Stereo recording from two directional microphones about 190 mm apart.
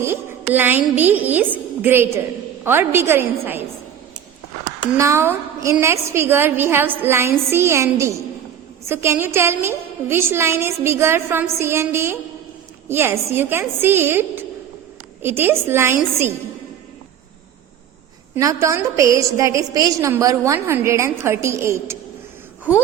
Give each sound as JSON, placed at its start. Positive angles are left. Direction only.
{"t": 0.0, "sound": "a woman's voice", "side_deg": -10}
{"t": 4.9, "sound": "a woman's voice", "side_deg": -15}
{"t": 18.3, "sound": "a woman's voice", "side_deg": -15}